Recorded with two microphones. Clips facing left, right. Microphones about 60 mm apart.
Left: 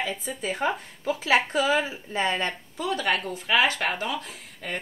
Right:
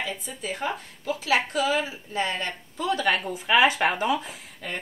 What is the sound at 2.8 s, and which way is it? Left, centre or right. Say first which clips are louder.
Speech: right 2 dB; centre.